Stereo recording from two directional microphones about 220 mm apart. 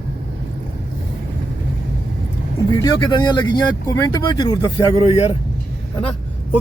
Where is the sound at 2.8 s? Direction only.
20° left (ahead or behind).